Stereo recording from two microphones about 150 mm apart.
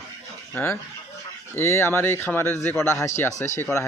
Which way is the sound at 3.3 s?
50° left (ahead or behind).